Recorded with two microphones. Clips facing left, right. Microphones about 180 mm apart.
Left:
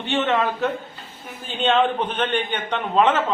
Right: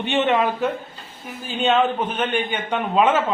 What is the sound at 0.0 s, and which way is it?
Speech, 15° right (ahead or behind).